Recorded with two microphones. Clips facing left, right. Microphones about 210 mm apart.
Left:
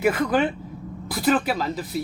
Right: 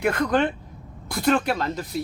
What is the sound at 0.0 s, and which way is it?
Speech, 5° left (ahead or behind).